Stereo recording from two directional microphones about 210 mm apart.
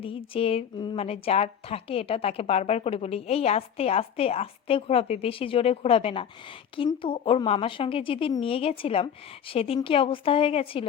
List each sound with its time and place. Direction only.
0.0 s a woman's voice: 25° left (ahead or behind)